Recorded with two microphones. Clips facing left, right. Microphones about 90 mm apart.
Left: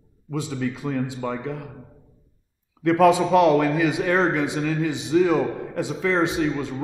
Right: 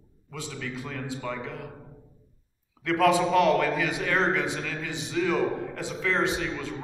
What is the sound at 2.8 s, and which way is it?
Speech, 20° left (ahead or behind).